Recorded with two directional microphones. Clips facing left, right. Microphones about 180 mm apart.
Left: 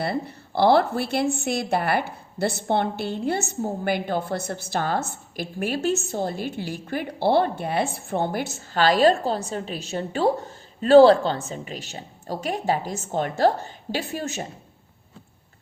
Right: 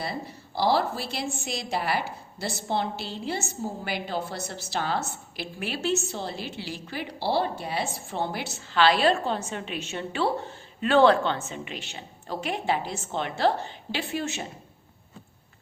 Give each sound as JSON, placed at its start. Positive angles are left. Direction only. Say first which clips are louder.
{"t": 0.0, "sound": "a woman's voice", "louder": "left 6 dB", "side_deg": 60}